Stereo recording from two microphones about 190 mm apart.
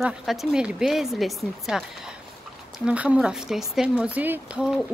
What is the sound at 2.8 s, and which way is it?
Speech, 5° right (ahead or behind).